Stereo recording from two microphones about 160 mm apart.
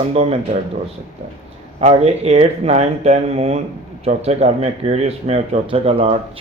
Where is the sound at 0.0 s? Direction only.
40° right (ahead or behind).